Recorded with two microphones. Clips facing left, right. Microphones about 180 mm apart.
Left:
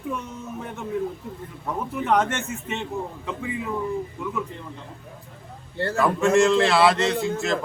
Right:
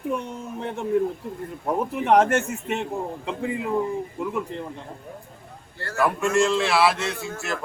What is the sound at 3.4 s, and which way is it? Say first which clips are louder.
Speech: right 3 dB; 55° right (ahead or behind).